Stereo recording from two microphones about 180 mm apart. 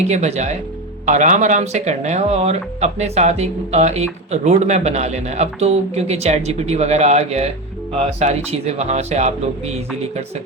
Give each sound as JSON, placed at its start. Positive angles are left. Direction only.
{"t": 0.1, "sound": "speech", "side_deg": -40}